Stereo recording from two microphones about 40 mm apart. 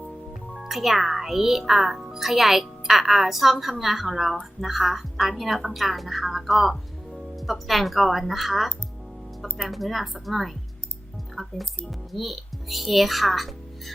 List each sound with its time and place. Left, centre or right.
0.6 s a woman's voice: centre
11.3 s music: centre
11.9 s a child's voice: centre